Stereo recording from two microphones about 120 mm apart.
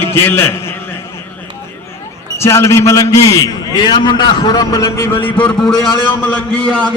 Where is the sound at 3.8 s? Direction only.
40° left (ahead or behind); by 6.9 s 10° left (ahead or behind).